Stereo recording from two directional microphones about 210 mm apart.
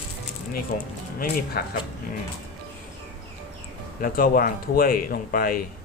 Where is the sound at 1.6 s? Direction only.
45° left (ahead or behind).